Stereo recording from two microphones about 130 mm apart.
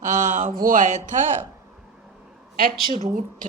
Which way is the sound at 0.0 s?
75° right (ahead or behind).